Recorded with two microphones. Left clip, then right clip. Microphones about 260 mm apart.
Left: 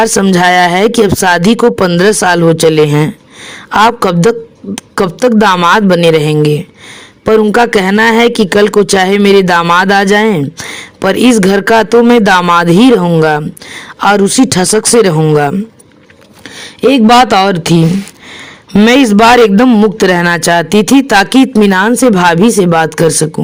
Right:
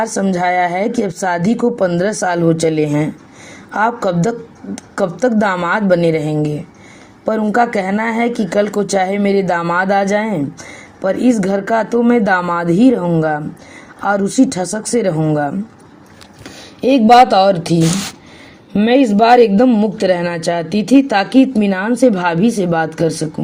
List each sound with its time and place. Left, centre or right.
0.0 s speech: left
16.6 s speech: left